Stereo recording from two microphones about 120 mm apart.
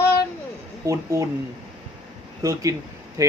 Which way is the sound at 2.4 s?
30° right (ahead or behind).